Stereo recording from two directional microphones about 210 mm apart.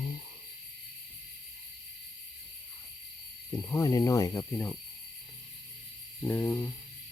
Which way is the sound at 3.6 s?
15° left (ahead or behind).